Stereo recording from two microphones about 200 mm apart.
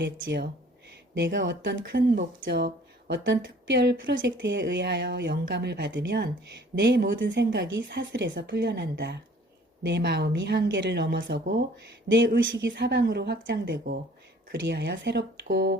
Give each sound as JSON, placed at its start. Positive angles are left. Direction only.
{"t": 0.0, "sound": "speech", "side_deg": -60}
{"t": 1.8, "sound": "speech", "side_deg": -50}